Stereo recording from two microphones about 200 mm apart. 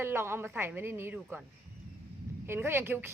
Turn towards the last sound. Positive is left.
turn(degrees=-10)  # may be behind; listen again after turning